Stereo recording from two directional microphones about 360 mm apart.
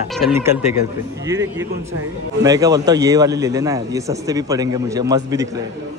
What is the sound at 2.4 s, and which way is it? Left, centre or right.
A man's voice, centre.